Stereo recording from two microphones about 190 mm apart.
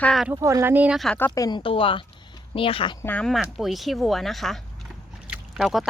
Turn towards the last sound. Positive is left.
turn(degrees=0)  # may be behind; listen again after turning